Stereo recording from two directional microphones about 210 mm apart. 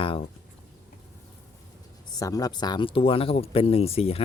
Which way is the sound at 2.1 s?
15° left (ahead or behind).